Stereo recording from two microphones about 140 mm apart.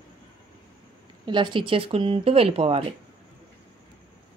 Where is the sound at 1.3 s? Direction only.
35° right (ahead or behind).